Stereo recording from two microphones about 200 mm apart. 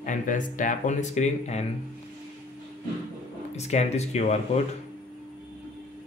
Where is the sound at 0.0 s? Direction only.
40° left (ahead or behind).